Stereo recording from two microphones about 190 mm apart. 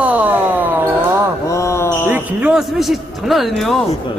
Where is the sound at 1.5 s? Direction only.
15° left (ahead or behind).